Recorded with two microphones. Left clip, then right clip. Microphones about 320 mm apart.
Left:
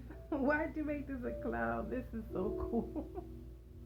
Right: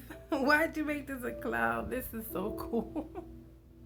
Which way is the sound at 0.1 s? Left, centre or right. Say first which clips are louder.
Right 7 dB; centre.